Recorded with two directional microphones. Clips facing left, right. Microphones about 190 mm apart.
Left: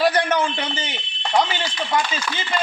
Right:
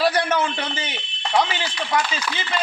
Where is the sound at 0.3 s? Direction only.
10° left (ahead or behind).